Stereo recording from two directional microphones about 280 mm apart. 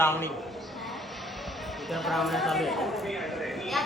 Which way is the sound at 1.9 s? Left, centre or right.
Centre.